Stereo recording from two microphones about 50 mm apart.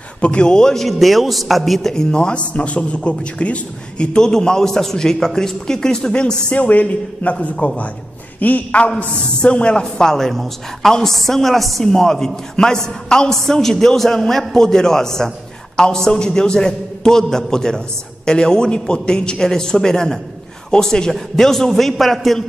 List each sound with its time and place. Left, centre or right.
0.2 s a man's voice: centre
0.8 s a man's voice: centre
2.0 s a man's voice: centre
6.5 s a man's voice: left; by 22.4 s centre